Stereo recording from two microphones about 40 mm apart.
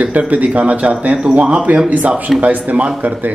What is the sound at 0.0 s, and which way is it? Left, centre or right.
Speech, right.